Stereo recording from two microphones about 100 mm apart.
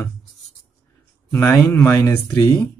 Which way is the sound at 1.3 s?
25° left (ahead or behind).